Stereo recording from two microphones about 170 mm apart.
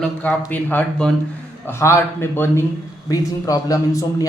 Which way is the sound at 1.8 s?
15° left (ahead or behind).